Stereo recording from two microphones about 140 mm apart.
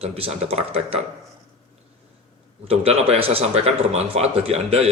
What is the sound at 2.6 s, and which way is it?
A man's voice, 45° right (ahead or behind).